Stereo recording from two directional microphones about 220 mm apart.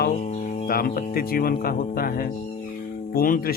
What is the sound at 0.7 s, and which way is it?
Speech, 40° left (ahead or behind).